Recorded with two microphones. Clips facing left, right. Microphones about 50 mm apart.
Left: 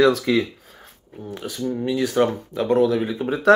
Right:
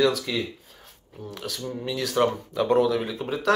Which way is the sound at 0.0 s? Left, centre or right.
Left.